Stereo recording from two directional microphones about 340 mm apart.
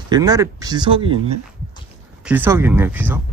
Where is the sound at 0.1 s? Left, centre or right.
Centre.